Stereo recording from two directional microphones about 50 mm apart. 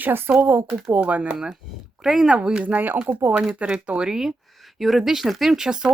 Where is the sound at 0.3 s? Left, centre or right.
Right.